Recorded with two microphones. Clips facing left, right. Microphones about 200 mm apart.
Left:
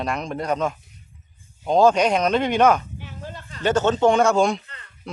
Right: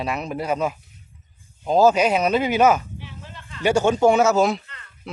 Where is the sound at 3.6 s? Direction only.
10° right (ahead or behind).